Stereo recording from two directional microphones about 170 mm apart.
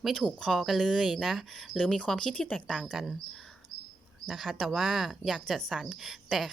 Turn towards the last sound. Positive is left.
turn(degrees=0)  # may be behind; listen again after turning